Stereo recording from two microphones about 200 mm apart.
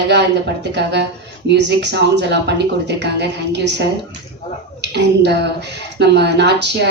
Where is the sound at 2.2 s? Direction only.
60° right (ahead or behind).